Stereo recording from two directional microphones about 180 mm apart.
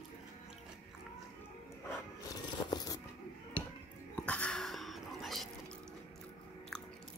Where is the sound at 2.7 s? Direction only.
20° left (ahead or behind).